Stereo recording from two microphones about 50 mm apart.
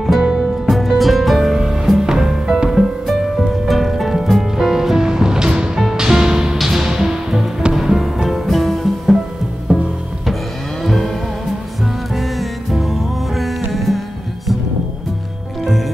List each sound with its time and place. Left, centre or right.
0.0 s music: centre
9.7 s music: centre
10.8 s music: centre
12.2 s music: centre